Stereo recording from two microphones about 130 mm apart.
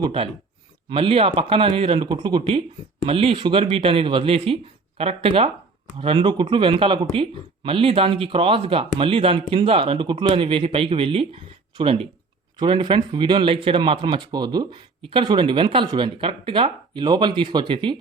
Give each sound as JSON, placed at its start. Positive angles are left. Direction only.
{"t": 0.0, "sound": "speech", "side_deg": -45}